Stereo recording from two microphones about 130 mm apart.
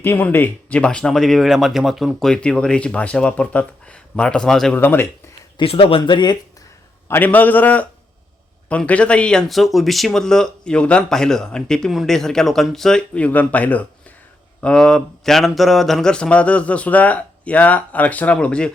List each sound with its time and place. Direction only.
0.0 s speech: 15° left (ahead or behind)
4.8 s speech: 15° left (ahead or behind)
5.5 s speech: 45° left (ahead or behind)
7.1 s speech: 15° left (ahead or behind)